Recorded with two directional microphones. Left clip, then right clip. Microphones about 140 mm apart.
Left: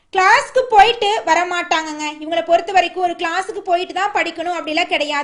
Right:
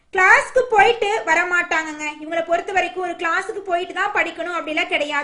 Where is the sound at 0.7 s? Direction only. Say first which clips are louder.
Left 5 dB; 45° left (ahead or behind).